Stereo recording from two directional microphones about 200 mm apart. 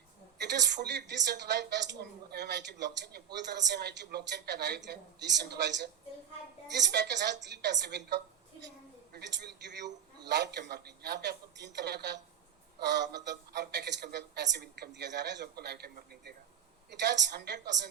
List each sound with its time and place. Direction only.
0.3 s a man's voice: 60° right (ahead or behind)